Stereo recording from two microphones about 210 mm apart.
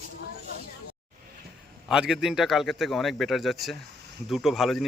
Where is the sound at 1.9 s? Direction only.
5° right (ahead or behind).